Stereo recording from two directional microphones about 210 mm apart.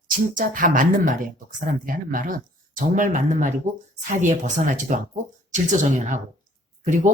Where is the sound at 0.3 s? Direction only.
40° right (ahead or behind).